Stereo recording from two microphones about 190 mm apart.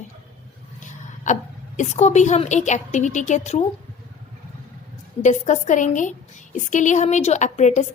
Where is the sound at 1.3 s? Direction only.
40° left (ahead or behind).